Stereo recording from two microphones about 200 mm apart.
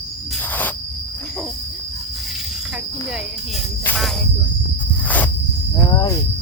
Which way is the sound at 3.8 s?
5° left (ahead or behind).